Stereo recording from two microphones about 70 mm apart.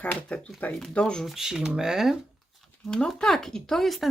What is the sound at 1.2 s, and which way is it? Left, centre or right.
Speech, centre.